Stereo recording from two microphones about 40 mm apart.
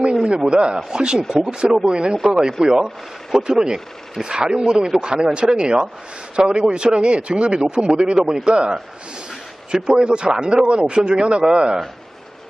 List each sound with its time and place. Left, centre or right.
0.3 s speech: right
4.9 s speech: right
9.7 s speech: right